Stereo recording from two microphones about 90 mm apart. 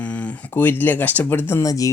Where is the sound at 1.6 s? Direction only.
40° left (ahead or behind).